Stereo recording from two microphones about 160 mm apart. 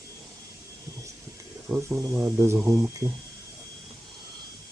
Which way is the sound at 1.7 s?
5° right (ahead or behind).